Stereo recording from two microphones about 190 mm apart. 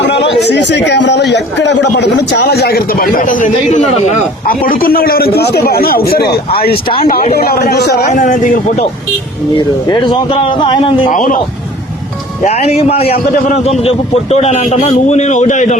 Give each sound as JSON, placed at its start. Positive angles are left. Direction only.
{"t": 0.4, "sound": "a man's voice", "side_deg": 65}
{"t": 4.4, "sound": "a man's voice", "side_deg": 50}
{"t": 6.8, "sound": "speech", "side_deg": 30}
{"t": 7.3, "sound": "a man's voice", "side_deg": 55}
{"t": 8.1, "sound": "a man's voice", "side_deg": 40}
{"t": 9.6, "sound": "speech", "side_deg": 25}
{"t": 11.1, "sound": "a man's voice", "side_deg": 45}
{"t": 12.4, "sound": "a man's voice", "side_deg": 35}